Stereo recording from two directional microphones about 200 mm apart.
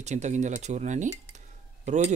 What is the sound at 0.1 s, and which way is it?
Speech, 35° right (ahead or behind).